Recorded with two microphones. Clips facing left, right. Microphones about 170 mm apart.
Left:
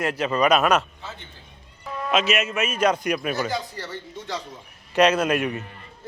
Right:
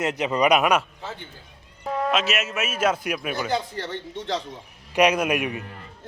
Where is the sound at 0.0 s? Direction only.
20° right (ahead or behind).